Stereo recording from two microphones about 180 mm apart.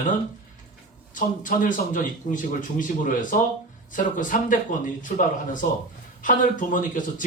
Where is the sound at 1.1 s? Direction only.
45° left (ahead or behind).